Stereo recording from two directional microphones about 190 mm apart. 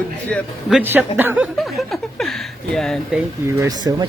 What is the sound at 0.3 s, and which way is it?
Speech, 5° left (ahead or behind).